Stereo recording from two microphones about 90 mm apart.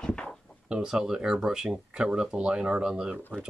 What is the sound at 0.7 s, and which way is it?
Speech, 10° right (ahead or behind).